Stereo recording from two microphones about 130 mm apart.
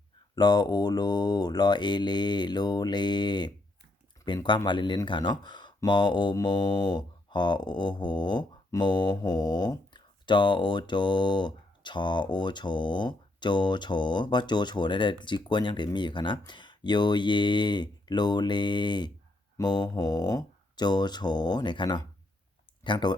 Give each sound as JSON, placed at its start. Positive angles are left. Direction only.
{"t": 0.3, "sound": "music", "side_deg": 35}
{"t": 22.8, "sound": "speech", "side_deg": 35}